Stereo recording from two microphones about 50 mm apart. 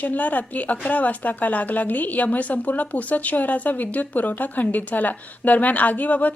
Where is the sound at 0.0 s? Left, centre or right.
Left.